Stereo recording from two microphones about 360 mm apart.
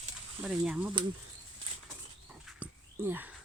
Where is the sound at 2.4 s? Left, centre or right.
Centre.